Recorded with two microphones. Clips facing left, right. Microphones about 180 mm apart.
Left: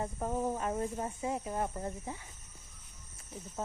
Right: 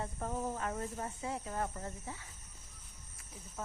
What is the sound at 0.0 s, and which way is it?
Speech, 20° left (ahead or behind).